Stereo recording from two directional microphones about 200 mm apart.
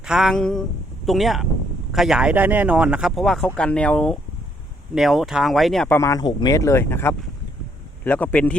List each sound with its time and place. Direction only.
0.0 s speech: centre (ahead or behind)
6.0 s speech: 15° left (ahead or behind)